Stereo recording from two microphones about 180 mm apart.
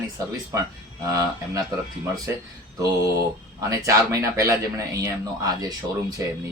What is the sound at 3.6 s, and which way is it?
Speech, 20° right (ahead or behind).